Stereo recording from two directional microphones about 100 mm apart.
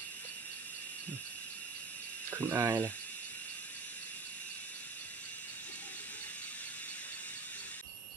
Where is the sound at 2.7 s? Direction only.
15° left (ahead or behind).